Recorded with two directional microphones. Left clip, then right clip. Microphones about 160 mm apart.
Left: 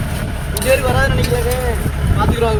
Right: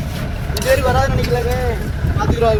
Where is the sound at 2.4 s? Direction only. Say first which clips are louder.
Right 3 dB; 30° right (ahead or behind).